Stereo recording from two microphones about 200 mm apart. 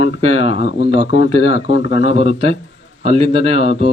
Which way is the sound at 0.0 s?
90° left.